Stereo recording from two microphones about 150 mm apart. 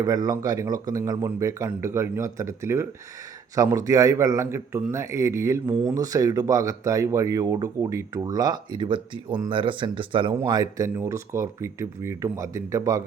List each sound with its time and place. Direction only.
0.0 s a man's voice: 25° right (ahead or behind)